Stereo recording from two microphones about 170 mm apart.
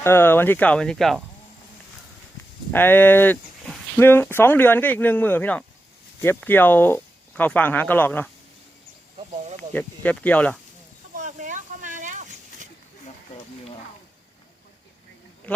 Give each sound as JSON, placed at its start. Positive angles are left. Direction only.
{"t": 0.0, "sound": "speech", "side_deg": 15}
{"t": 2.7, "sound": "speech", "side_deg": 10}
{"t": 9.1, "sound": "snake", "side_deg": -35}
{"t": 9.7, "sound": "speech", "side_deg": 10}
{"t": 11.1, "sound": "a sound", "side_deg": -45}
{"t": 15.5, "sound": "speech", "side_deg": 10}